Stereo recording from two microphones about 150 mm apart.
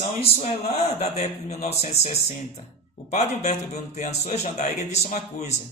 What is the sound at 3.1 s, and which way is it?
A man's voice, 50° left (ahead or behind).